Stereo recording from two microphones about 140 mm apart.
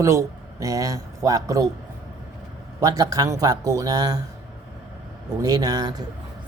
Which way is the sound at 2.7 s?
25° right (ahead or behind).